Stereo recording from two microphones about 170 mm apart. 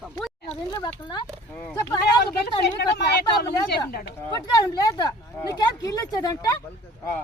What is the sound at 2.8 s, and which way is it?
Speech, 70° left (ahead or behind).